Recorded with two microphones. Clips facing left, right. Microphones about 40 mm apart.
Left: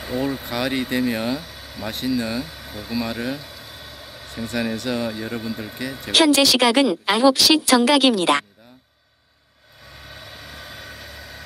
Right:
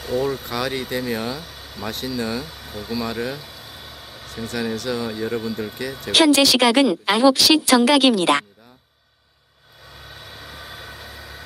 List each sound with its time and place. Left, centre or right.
0.0 s speech: centre
1.5 s vehicle: centre
4.5 s speech: centre
6.1 s a woman's voice: right
10.4 s vehicle: centre